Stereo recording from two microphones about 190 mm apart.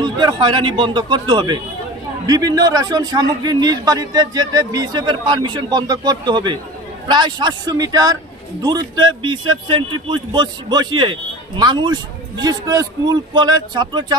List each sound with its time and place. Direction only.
0.0 s a man's voice: 20° right (ahead or behind)